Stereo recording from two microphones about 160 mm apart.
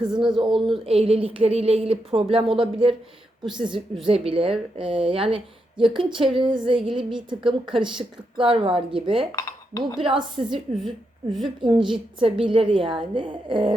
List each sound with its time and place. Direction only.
0.0 s a woman's voice: 30° right (ahead or behind)
4.0 s a woman's voice: 35° right (ahead or behind)
9.3 s speech: 15° left (ahead or behind)
10.0 s a woman's voice: 30° right (ahead or behind)
10.8 s a woman's voice: centre (ahead or behind)
11.6 s a woman's voice: 30° right (ahead or behind)